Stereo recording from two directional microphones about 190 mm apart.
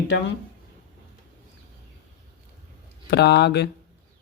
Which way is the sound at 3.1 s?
60° left (ahead or behind).